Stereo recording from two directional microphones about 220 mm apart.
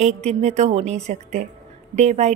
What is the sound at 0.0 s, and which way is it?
A woman's voice, 30° right (ahead or behind).